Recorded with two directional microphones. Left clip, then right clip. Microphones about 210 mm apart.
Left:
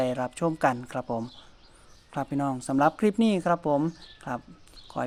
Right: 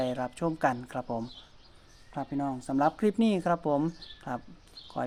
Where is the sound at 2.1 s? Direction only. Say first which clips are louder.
Left 4 dB; 35° left (ahead or behind).